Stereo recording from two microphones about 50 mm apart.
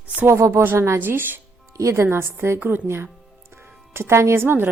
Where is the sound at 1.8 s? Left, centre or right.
Right.